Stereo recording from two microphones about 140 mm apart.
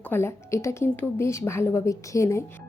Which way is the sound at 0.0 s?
15° left (ahead or behind).